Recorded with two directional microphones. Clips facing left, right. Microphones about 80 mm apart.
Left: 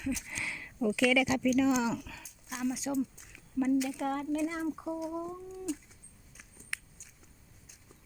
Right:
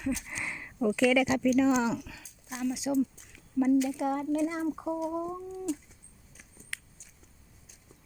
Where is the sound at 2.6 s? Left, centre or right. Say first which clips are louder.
Right 3 dB; centre.